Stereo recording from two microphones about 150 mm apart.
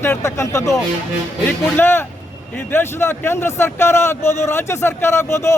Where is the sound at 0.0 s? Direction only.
20° left (ahead or behind).